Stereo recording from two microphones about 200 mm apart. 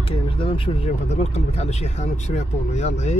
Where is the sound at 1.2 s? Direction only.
30° left (ahead or behind).